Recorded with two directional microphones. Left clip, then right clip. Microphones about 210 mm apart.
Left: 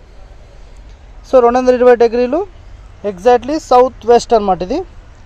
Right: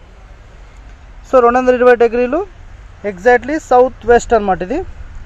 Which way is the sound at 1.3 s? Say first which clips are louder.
Left 1 dB; 15° left (ahead or behind).